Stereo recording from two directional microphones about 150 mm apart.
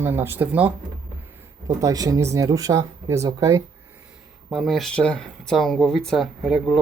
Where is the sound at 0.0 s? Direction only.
15° right (ahead or behind).